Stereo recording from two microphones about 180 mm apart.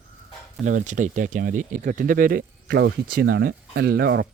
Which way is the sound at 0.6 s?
45° right (ahead or behind).